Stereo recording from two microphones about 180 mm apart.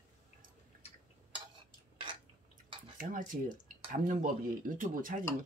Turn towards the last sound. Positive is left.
turn(degrees=-50)  # may be behind; listen again after turning